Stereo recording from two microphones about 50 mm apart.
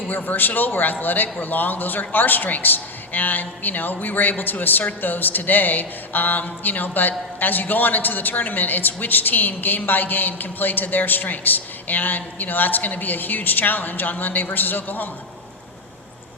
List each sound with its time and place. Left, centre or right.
0.3 s a man's voice: left